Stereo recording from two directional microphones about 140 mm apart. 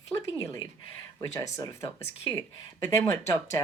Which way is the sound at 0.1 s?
20° left (ahead or behind).